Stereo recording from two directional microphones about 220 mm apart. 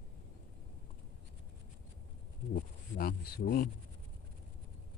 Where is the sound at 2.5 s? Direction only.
45° left (ahead or behind).